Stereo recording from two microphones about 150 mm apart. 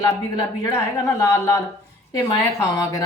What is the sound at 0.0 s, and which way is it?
A woman's voice, 25° left (ahead or behind).